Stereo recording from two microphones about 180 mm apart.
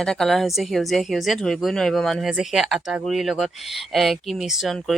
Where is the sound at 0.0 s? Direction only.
Centre (ahead or behind).